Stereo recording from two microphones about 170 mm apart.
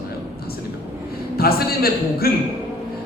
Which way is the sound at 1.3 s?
65° left (ahead or behind).